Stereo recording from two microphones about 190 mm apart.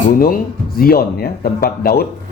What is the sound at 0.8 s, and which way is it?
Speech, 50° left (ahead or behind).